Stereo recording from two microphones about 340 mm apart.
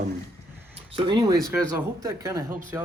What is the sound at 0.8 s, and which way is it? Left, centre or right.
Speech, centre.